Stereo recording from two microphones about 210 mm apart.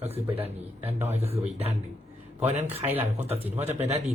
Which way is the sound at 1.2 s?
30° right (ahead or behind).